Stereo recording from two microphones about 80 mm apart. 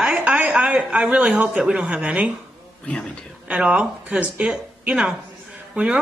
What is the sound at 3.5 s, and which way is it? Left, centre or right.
Speech, centre.